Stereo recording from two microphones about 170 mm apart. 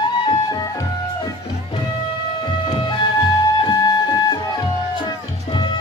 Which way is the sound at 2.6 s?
30° left (ahead or behind).